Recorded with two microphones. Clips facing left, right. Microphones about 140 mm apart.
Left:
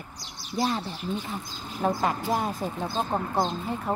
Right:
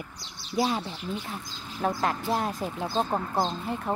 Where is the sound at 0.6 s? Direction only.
5° right (ahead or behind).